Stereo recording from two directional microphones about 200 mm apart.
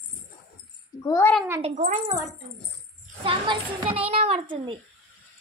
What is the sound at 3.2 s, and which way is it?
A child's voice, 25° right (ahead or behind).